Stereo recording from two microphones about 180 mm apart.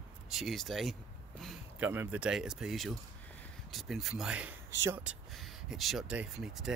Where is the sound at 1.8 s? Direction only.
10° right (ahead or behind).